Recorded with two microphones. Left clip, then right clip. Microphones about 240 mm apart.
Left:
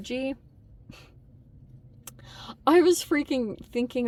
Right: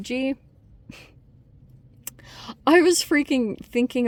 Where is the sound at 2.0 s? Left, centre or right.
Right.